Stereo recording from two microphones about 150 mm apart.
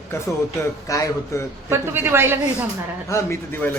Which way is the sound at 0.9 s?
20° left (ahead or behind).